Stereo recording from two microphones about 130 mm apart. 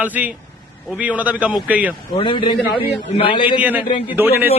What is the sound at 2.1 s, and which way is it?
A man's voice, 40° left (ahead or behind).